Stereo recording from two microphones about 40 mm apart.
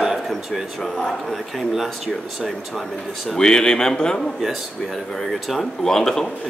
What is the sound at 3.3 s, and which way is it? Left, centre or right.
Speech, centre.